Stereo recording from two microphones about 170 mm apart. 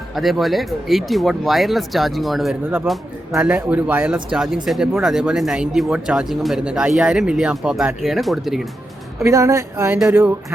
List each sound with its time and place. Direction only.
0.2 s speech: centre (ahead or behind)
9.2 s speech: 15° right (ahead or behind)